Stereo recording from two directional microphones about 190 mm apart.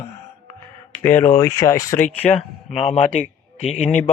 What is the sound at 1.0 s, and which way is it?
Speech, 10° left (ahead or behind).